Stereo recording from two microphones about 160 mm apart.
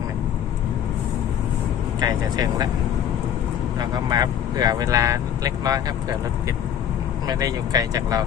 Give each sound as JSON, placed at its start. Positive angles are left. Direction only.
{"t": 2.0, "sound": "speech", "side_deg": -25}
{"t": 3.8, "sound": "speech", "side_deg": -25}
{"t": 7.3, "sound": "speech", "side_deg": -25}